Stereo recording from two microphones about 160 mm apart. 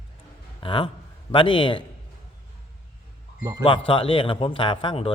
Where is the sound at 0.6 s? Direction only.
30° left (ahead or behind).